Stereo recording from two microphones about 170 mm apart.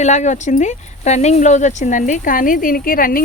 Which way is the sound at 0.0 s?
45° left (ahead or behind).